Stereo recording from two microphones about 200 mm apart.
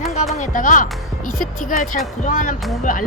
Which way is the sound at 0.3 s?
40° left (ahead or behind).